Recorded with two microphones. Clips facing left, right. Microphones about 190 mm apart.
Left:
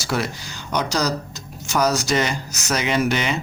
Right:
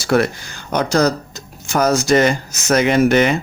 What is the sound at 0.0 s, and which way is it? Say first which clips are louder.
Speech: right 9 dB; 55° right (ahead or behind).